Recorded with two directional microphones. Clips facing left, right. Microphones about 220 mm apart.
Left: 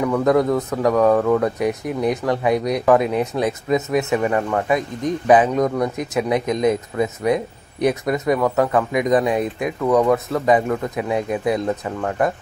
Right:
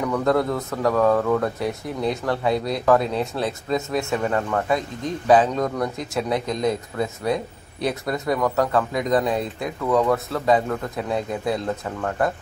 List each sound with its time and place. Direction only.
0.0 s speech: 10° left (ahead or behind)